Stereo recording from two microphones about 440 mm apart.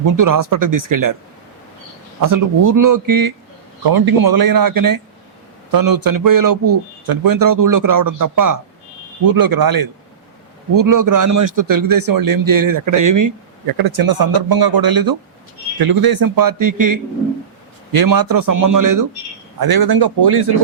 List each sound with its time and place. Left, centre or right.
0.0 s a man's voice: right
2.2 s a man's voice: right